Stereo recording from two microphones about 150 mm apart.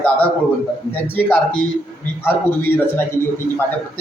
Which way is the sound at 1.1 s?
10° left (ahead or behind).